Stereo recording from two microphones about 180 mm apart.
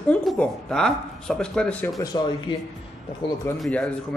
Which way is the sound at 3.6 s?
5° left (ahead or behind).